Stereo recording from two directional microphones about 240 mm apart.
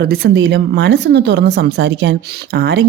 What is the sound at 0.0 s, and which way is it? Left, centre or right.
Speech, right.